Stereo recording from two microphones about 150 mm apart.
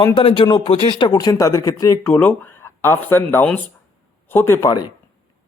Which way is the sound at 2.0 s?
10° left (ahead or behind).